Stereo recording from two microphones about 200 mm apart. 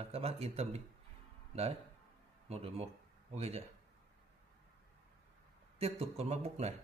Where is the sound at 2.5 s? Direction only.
30° right (ahead or behind).